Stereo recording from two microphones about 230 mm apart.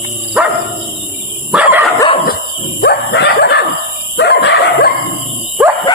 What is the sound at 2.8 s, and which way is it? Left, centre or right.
Dog, left.